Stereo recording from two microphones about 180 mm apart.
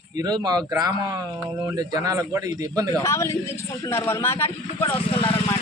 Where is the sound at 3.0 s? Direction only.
15° left (ahead or behind).